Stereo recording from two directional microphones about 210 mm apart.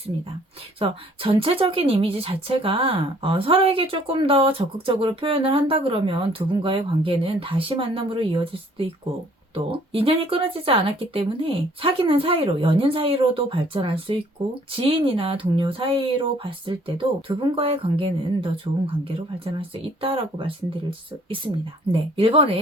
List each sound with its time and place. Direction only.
0.8 s speech: 25° right (ahead or behind)
9.9 s speech: 25° right (ahead or behind)
21.9 s speech: 25° right (ahead or behind)